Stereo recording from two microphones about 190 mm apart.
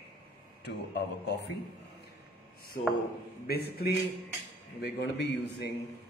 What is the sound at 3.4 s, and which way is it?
A man's voice, 55° left (ahead or behind).